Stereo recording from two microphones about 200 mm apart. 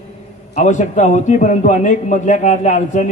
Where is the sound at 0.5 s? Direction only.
40° left (ahead or behind).